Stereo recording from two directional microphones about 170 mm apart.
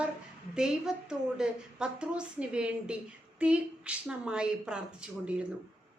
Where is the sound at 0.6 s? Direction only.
5° right (ahead or behind).